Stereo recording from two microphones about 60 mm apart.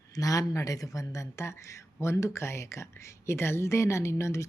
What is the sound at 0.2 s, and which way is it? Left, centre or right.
A woman's voice, left.